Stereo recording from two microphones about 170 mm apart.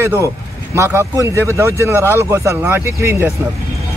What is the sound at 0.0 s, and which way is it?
Speech, 15° right (ahead or behind).